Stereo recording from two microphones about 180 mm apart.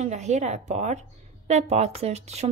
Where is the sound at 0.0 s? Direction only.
40° right (ahead or behind).